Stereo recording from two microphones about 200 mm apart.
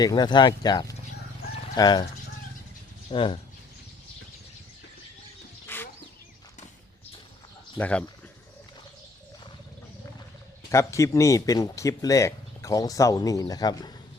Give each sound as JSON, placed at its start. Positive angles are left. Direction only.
{"t": 0.0, "sound": "speech", "side_deg": 20}
{"t": 3.1, "sound": "speech", "side_deg": 25}
{"t": 5.6, "sound": "chicken", "side_deg": 10}
{"t": 7.8, "sound": "speech", "side_deg": 5}
{"t": 10.7, "sound": "speech", "side_deg": 15}